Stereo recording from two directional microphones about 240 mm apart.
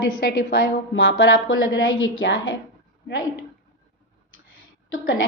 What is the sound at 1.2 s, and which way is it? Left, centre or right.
A woman's voice, left.